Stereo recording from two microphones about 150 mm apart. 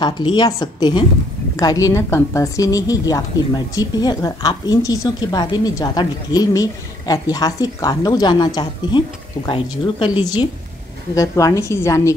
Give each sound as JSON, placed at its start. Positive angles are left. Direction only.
{"t": 0.0, "sound": "a woman's voice", "side_deg": 30}